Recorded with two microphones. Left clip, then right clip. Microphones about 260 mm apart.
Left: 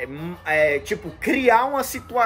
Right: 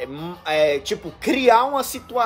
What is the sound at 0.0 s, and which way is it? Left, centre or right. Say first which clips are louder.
Speech: right 1 dB; right.